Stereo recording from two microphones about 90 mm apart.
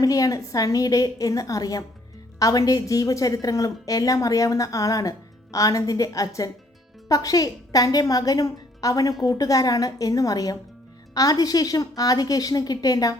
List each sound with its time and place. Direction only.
0.0 s a woman's voice: 40° left (ahead or behind)